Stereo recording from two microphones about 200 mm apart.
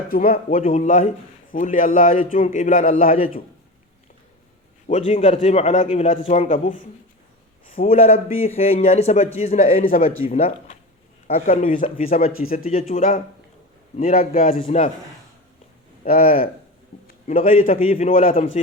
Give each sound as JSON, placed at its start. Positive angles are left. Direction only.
{"t": 0.1, "sound": "speech", "side_deg": 45}
{"t": 4.9, "sound": "speech", "side_deg": 35}
{"t": 7.9, "sound": "speech", "side_deg": 30}
{"t": 10.2, "sound": "speech", "side_deg": 30}
{"t": 11.8, "sound": "a man's voice", "side_deg": 45}
{"t": 16.0, "sound": "a man's voice", "side_deg": 45}
{"t": 17.5, "sound": "a man's voice", "side_deg": 45}
{"t": 17.9, "sound": "speech", "side_deg": 30}